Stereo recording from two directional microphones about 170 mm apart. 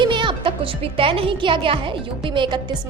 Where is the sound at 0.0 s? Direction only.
30° right (ahead or behind).